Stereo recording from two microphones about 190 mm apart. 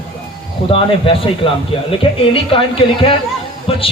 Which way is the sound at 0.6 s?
30° left (ahead or behind).